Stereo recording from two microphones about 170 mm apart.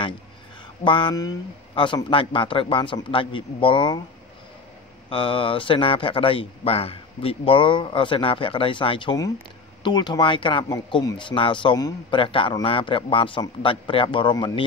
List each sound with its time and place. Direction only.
0.8 s speech: 30° left (ahead or behind)
5.1 s a man's voice: 30° left (ahead or behind)